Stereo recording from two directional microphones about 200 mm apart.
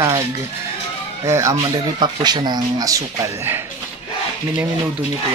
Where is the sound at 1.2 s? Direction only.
15° right (ahead or behind).